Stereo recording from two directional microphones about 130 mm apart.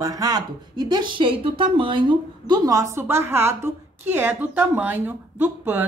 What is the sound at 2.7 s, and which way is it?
A woman's voice, 25° right (ahead or behind).